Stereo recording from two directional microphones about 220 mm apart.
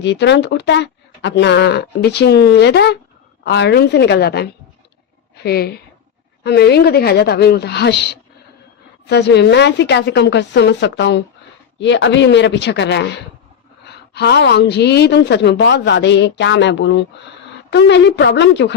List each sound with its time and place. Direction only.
0.0 s a woman's voice: 50° left (ahead or behind)